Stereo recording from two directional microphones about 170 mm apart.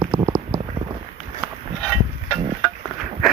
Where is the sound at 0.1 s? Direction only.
20° right (ahead or behind).